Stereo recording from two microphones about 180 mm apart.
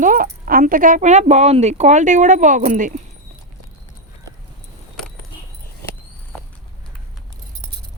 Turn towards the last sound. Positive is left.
turn(degrees=5)  # may be behind; listen again after turning